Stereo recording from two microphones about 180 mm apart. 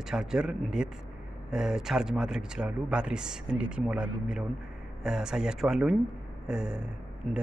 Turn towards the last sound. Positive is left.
turn(degrees=0)  # may be behind; listen again after turning